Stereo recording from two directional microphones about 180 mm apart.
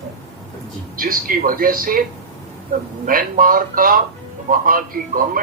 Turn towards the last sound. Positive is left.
turn(degrees=-50)  # may be behind; listen again after turning